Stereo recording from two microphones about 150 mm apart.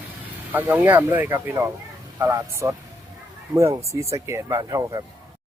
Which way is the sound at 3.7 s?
20° right (ahead or behind).